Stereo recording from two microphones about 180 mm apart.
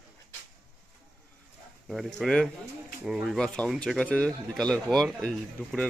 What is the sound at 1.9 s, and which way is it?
Speech, centre (ahead or behind).